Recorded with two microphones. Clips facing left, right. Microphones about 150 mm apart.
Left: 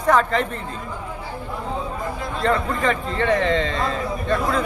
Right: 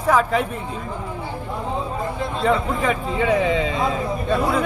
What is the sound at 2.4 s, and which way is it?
A man's voice, 5° right (ahead or behind).